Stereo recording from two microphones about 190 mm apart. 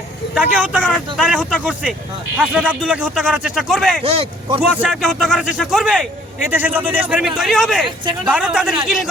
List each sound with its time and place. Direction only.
0.3 s speech: 5° right (ahead or behind)
4.0 s a man's voice: 30° right (ahead or behind)
4.6 s a man's voice: centre (ahead or behind)